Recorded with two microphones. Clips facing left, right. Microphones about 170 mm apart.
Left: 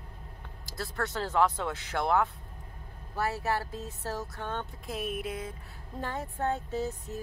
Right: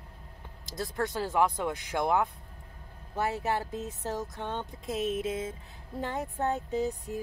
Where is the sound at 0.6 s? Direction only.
20° right (ahead or behind).